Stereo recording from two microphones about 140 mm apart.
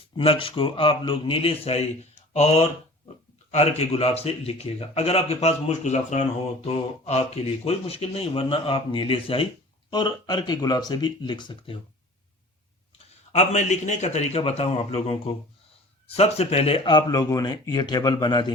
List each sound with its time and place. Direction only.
0.2 s speech: 40° left (ahead or behind); by 6.2 s 55° left (ahead or behind)
6.7 s speech: 45° left (ahead or behind)
13.3 s speech: 55° left (ahead or behind); by 18.5 s 30° left (ahead or behind)